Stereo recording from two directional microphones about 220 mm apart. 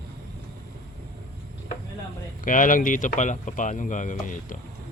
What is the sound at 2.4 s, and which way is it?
Speech, 35° left (ahead or behind).